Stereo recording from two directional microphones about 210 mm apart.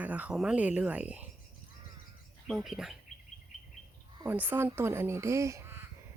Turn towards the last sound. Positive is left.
turn(degrees=-10)  # may be behind; listen again after turning